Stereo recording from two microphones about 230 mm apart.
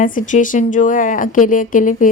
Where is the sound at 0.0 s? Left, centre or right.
Left.